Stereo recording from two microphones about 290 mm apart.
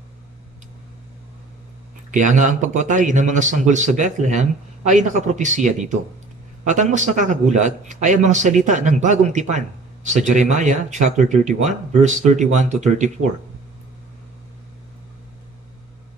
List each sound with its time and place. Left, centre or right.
2.0 s a man's voice: right